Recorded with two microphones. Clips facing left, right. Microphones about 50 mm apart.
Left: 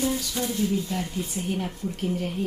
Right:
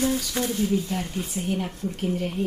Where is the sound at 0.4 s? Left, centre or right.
Right.